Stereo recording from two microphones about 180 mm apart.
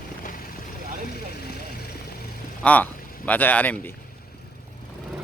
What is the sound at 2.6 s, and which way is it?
Speech, 10° left (ahead or behind).